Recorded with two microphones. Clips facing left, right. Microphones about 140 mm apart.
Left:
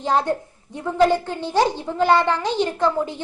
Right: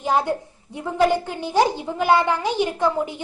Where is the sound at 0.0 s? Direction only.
10° right (ahead or behind).